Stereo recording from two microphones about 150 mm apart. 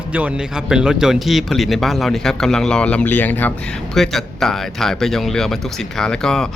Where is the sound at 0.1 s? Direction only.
10° right (ahead or behind); by 3.5 s 10° left (ahead or behind).